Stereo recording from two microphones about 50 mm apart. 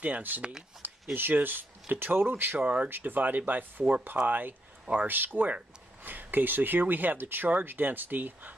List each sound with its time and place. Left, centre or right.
0.0 s speech: right
0.4 s speech: centre
1.1 s speech: right